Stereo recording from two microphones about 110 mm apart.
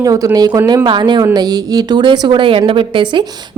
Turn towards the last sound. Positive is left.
turn(degrees=-45)  # may be behind; listen again after turning